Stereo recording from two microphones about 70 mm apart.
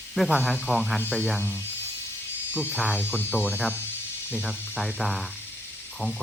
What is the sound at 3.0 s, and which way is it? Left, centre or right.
Speech, left.